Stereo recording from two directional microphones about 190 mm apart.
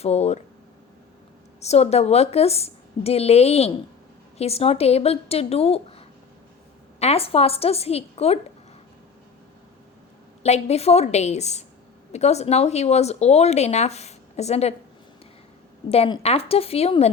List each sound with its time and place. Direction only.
0.0 s speech: 35° left (ahead or behind)
1.6 s speech: 35° left (ahead or behind)
7.0 s speech: 30° left (ahead or behind)
10.4 s speech: 35° left (ahead or behind)
15.9 s speech: 30° left (ahead or behind)